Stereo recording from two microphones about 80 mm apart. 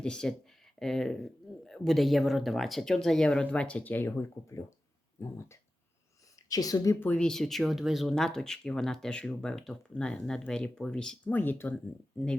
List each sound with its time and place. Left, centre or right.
0.0 s speech: centre; by 5.5 s left
6.5 s speech: left
7.2 s speech: centre
11.3 s speech: left